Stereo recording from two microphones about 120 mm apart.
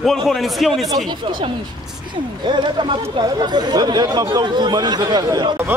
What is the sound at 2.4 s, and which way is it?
Speech, 40° right (ahead or behind).